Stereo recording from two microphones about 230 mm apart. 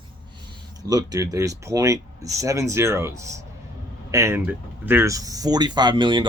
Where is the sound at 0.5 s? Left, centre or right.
Centre.